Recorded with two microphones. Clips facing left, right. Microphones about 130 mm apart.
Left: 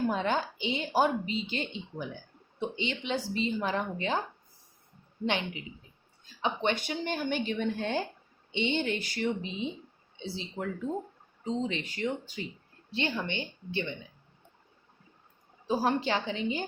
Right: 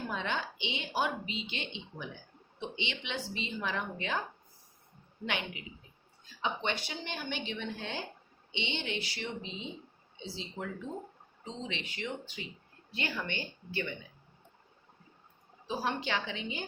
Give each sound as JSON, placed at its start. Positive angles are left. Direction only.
{"t": 0.1, "sound": "a woman's voice", "side_deg": 40}
{"t": 5.2, "sound": "a woman's voice", "side_deg": 30}
{"t": 6.4, "sound": "a woman's voice", "side_deg": 50}
{"t": 10.2, "sound": "speech", "side_deg": 60}
{"t": 11.4, "sound": "a woman's voice", "side_deg": 40}
{"t": 12.9, "sound": "a woman's voice", "side_deg": 25}
{"t": 15.6, "sound": "a woman's voice", "side_deg": 45}